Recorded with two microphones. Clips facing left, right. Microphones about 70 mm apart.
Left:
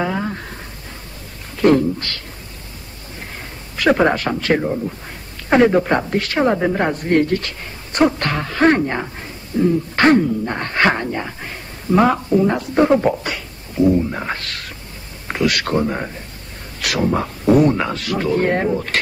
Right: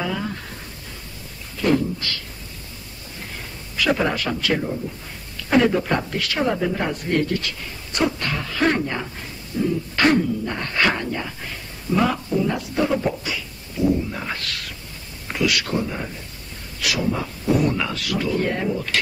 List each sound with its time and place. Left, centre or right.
0.0 s a sound: left
1.6 s speech: left
3.7 s speech: left
14.1 s speech: left
17.6 s speech: left